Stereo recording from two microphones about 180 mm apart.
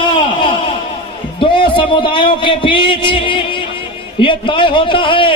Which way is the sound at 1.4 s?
30° left (ahead or behind).